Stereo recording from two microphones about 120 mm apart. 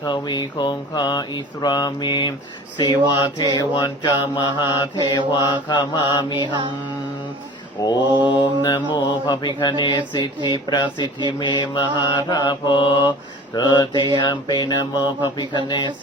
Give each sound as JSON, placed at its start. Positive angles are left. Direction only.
{"t": 0.0, "sound": "speech", "side_deg": 40}
{"t": 7.8, "sound": "mantra", "side_deg": 25}
{"t": 8.3, "sound": "speech", "side_deg": 40}